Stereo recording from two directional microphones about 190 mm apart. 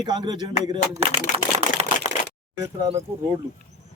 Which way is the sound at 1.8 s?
35° right (ahead or behind).